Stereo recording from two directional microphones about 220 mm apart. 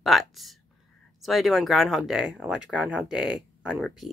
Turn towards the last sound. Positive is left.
turn(degrees=-5)  # may be behind; listen again after turning